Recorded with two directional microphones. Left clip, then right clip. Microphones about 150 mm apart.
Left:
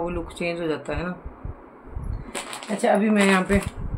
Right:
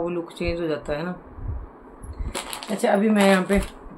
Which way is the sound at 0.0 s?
Centre (ahead or behind).